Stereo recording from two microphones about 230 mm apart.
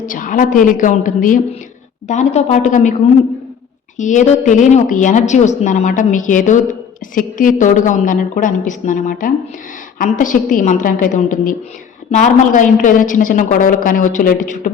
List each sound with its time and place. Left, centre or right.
0.0 s a woman's voice: left
3.9 s a woman's voice: left